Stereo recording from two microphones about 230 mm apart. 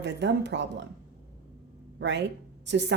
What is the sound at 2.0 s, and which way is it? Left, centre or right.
Speech, right.